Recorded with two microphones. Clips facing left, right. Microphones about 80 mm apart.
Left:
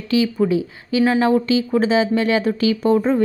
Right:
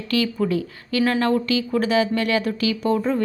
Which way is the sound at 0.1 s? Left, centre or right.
Centre.